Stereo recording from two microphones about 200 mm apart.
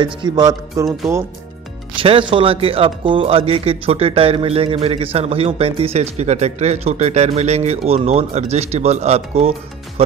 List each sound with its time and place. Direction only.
0.0 s a man's voice: 20° right (ahead or behind)
2.0 s a man's voice: 25° right (ahead or behind)